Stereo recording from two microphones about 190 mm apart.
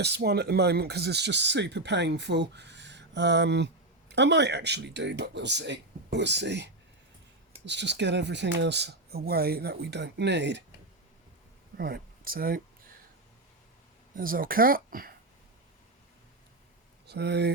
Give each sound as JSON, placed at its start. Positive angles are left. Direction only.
{"t": 0.0, "sound": "speech", "side_deg": -60}
{"t": 11.8, "sound": "a sound", "side_deg": -55}
{"t": 14.2, "sound": "speech", "side_deg": -50}
{"t": 17.1, "sound": "speech", "side_deg": -60}